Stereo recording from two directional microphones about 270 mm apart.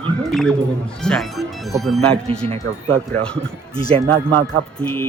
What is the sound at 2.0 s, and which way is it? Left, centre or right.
Speech, right.